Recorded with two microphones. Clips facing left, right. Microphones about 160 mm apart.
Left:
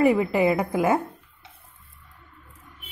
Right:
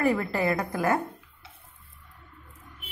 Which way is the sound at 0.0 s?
15° left (ahead or behind).